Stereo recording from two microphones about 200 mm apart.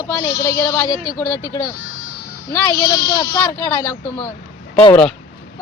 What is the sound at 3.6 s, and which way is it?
Speech, 10° left (ahead or behind).